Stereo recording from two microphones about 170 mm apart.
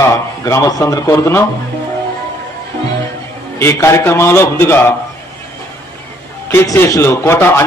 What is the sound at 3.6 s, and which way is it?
A man's voice, 15° left (ahead or behind).